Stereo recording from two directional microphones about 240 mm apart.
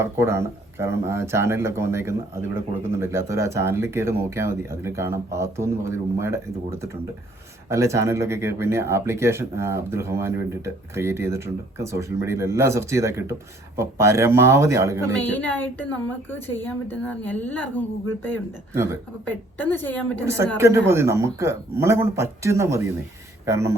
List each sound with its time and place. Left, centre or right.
0.0 s speech: centre
15.2 s a woman's voice: centre
19.2 s a woman's voice: centre
20.6 s speech: centre